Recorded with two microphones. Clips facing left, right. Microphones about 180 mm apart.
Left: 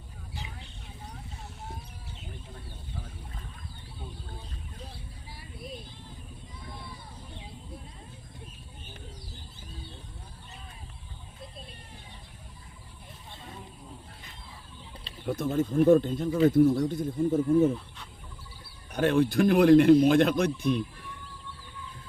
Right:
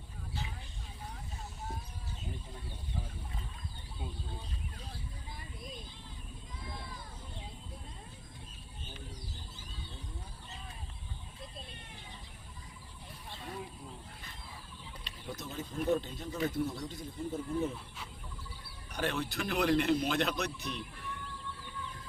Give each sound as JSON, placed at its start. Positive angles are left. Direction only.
{"t": 15.3, "sound": "a man's voice", "side_deg": 50}
{"t": 18.9, "sound": "a man's voice", "side_deg": 50}